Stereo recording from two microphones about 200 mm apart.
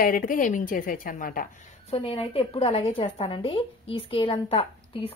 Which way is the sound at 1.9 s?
30° left (ahead or behind).